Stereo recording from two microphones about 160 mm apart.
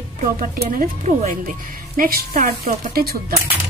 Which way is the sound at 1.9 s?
65° right (ahead or behind).